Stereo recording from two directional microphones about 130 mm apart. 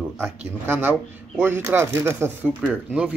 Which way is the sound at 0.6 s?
15° right (ahead or behind).